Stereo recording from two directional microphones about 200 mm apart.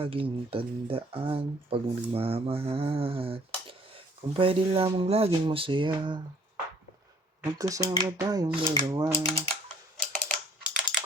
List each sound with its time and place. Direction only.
0.0 s speech: 25° right (ahead or behind)
7.6 s speech: 15° right (ahead or behind)
10.0 s typing: 5° left (ahead or behind)